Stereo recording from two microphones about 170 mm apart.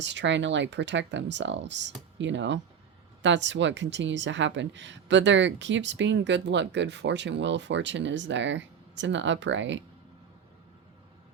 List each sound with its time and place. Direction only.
0.0 s speech: 90° right